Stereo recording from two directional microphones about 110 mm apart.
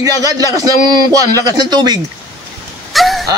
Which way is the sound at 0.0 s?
35° right (ahead or behind).